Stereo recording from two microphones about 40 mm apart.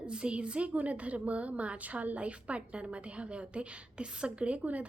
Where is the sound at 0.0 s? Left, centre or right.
Right.